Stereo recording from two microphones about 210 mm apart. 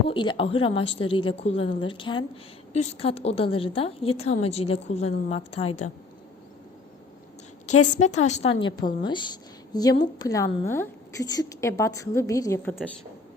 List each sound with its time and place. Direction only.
0.1 s a woman's voice: 25° left (ahead or behind)
7.7 s a woman's voice: 90° left
8.0 s a woman's voice: 35° left (ahead or behind); by 12.7 s 15° left (ahead or behind)